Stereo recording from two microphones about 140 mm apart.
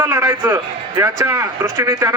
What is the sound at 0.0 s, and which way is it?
A man's voice, 15° right (ahead or behind).